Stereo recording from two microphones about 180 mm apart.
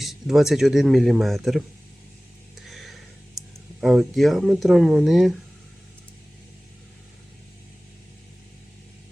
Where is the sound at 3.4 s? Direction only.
20° right (ahead or behind).